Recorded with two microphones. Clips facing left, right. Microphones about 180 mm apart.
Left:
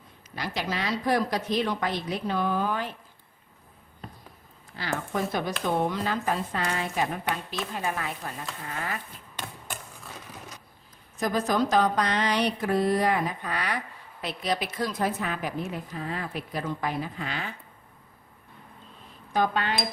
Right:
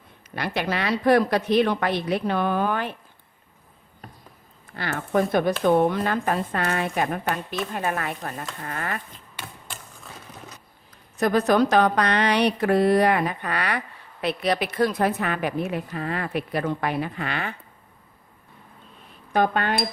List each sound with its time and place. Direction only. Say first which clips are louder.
0.3 s speech: right 5 dB; 60° right (ahead or behind)
4.7 s speech: right 6 dB; 60° right (ahead or behind)
11.2 s a woman's voice: right 6 dB; 65° right (ahead or behind)
19.3 s speech: right 4 dB; 55° right (ahead or behind)